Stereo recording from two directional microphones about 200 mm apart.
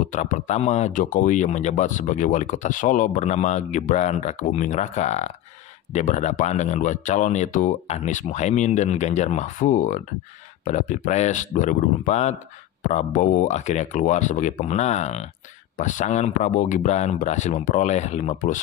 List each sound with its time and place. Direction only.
0.0 s speech: 40° left (ahead or behind)